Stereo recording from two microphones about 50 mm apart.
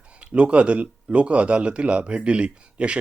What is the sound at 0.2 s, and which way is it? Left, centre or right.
Speech, right.